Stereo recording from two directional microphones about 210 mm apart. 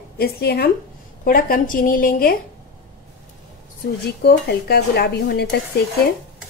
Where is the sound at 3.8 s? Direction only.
50° left (ahead or behind).